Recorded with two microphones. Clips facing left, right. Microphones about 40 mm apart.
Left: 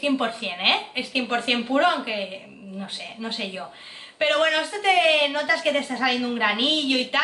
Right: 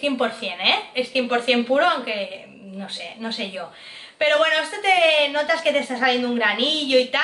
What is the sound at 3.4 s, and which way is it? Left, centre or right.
A woman's voice, centre.